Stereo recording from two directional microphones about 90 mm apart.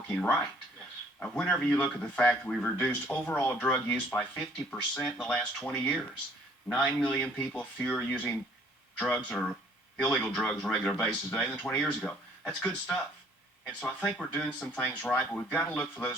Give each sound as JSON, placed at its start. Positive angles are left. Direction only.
{"t": 0.1, "sound": "speech", "side_deg": 10}
{"t": 1.4, "sound": "speech", "side_deg": 15}